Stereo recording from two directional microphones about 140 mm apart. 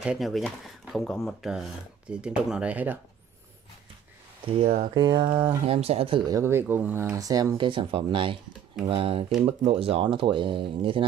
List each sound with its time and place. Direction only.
0.0 s speech: 5° right (ahead or behind)
4.5 s speech: 50° right (ahead or behind)
4.9 s speech: 35° right (ahead or behind)
6.2 s speech: 20° right (ahead or behind); by 11.1 s 40° right (ahead or behind)